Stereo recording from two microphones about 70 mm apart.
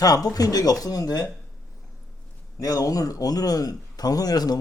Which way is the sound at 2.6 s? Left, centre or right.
Left.